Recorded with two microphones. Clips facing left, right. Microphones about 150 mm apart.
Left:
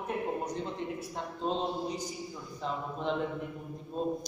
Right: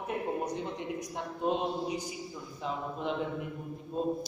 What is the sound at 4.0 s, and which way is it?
Speech, 5° right (ahead or behind).